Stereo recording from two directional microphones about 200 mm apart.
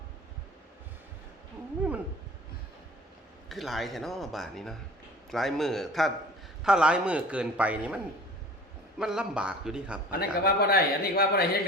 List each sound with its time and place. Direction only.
3.5 s a man's voice: centre (ahead or behind)
10.1 s a man's voice: 50° left (ahead or behind)